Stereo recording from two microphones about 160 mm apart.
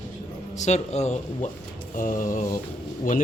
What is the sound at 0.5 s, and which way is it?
A man's voice, 45° left (ahead or behind).